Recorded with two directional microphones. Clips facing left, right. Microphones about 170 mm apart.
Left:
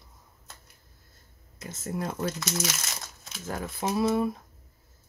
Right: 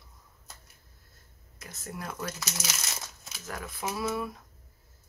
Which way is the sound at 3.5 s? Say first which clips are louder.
Left 5 dB; 30° left (ahead or behind).